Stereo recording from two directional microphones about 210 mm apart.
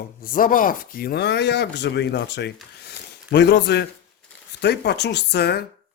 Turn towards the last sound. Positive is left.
turn(degrees=50)  # may be behind; listen again after turning